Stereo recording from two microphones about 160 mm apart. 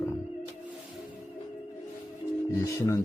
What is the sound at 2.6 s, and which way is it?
Speech, 20° left (ahead or behind).